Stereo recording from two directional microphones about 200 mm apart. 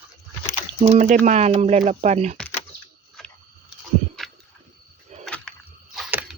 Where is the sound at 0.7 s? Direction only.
35° right (ahead or behind).